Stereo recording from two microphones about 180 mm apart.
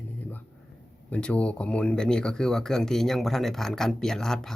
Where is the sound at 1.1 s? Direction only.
5° left (ahead or behind).